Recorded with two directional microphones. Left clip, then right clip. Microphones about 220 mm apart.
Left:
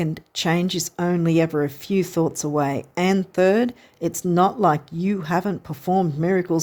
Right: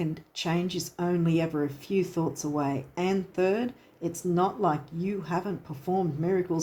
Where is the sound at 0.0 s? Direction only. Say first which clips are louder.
Left 8 dB; 50° left (ahead or behind).